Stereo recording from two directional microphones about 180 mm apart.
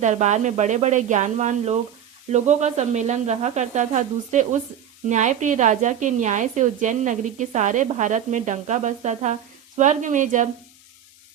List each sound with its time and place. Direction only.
0.0 s speech: 40° right (ahead or behind)